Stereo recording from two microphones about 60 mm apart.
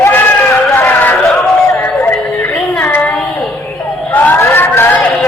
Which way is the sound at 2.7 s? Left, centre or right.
Left.